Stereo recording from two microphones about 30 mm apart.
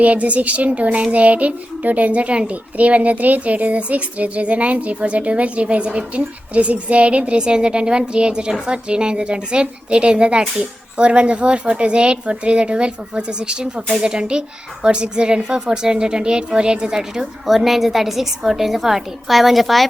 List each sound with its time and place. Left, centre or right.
0.0 s a child's voice: right
2.5 s speech: right
7.3 s a woman's voice: right
17.4 s a woman's voice: centre